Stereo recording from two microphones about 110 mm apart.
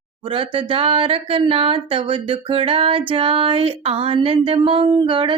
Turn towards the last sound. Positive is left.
turn(degrees=-50)  # may be behind; listen again after turning